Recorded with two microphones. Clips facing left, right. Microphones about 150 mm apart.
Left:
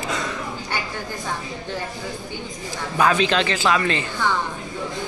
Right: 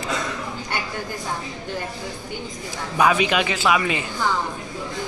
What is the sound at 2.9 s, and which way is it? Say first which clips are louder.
A man's voice: even; 10° right (ahead or behind).